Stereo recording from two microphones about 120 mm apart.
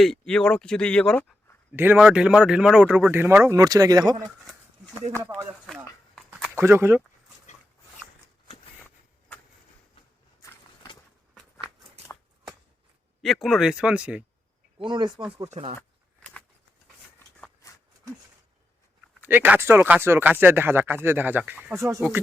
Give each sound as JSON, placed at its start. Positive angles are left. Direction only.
{"t": 0.0, "sound": "speech", "side_deg": 5}
{"t": 1.7, "sound": "speech", "side_deg": -15}
{"t": 3.6, "sound": "speech", "side_deg": -30}
{"t": 5.2, "sound": "speech", "side_deg": -20}
{"t": 5.6, "sound": "a sound", "side_deg": 5}
{"t": 6.6, "sound": "speech", "side_deg": -20}
{"t": 11.6, "sound": "a sound", "side_deg": -50}
{"t": 13.2, "sound": "speech", "side_deg": 0}
{"t": 14.8, "sound": "speech", "side_deg": -40}
{"t": 17.6, "sound": "a sound", "side_deg": 25}
{"t": 19.3, "sound": "speech", "side_deg": -15}